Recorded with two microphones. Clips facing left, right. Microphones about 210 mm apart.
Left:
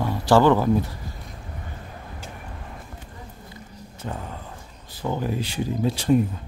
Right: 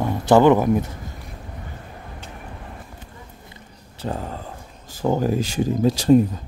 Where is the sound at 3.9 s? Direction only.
35° right (ahead or behind).